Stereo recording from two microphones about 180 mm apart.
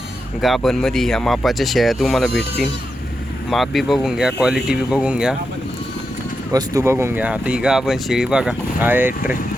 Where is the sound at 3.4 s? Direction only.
Centre (ahead or behind).